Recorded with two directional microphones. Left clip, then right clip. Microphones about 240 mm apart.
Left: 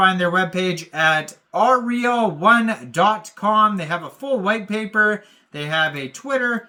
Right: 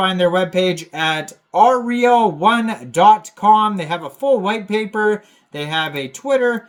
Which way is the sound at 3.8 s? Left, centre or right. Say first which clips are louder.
Right 5 dB; left.